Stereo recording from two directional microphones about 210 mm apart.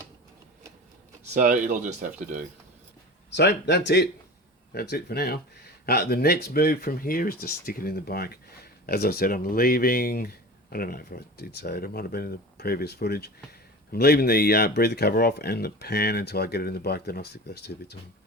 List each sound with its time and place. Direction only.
1.3 s speech: 40° right (ahead or behind)
3.3 s speech: 55° left (ahead or behind)